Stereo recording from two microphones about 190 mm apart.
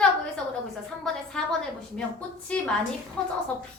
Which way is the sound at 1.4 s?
5° left (ahead or behind).